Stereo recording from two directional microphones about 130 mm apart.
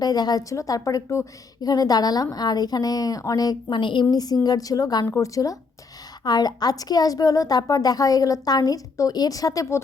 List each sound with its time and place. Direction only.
0.0 s a woman's voice: 30° left (ahead or behind)